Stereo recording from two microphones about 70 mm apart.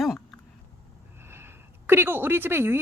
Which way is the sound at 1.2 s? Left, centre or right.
Right.